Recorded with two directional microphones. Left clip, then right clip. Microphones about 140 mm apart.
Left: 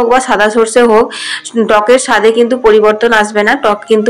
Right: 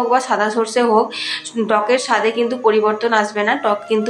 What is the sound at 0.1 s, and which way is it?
A woman's voice, 40° left (ahead or behind).